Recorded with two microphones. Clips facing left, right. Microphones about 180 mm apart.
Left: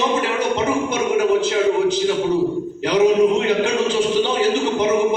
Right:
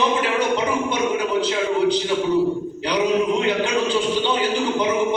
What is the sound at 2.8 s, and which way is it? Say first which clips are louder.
Speech: left 5 dB; 45° left (ahead or behind).